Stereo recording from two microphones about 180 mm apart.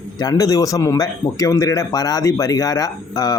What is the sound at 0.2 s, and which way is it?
Speech, 20° left (ahead or behind).